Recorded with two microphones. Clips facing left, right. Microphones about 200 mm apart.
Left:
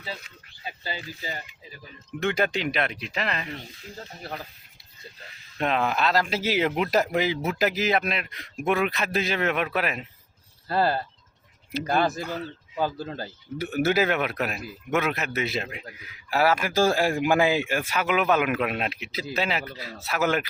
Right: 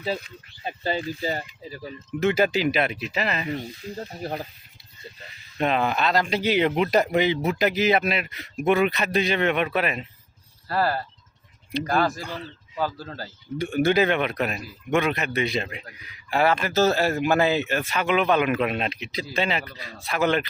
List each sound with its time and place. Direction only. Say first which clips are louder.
0.6 s speech: right 8 dB; 45° right (ahead or behind)
2.0 s a man's voice: right 4 dB; 5° right (ahead or behind)
3.9 s speech: right 5 dB; 40° right (ahead or behind)
5.5 s a man's voice: right 2 dB; centre (ahead or behind)
10.7 s speech: left 1 dB; 25° left (ahead or behind)
12.2 s speech: left 3 dB; 5° left (ahead or behind)
12.8 s speech: left 1 dB; 20° left (ahead or behind)
13.6 s a man's voice: right 3 dB; 5° left (ahead or behind)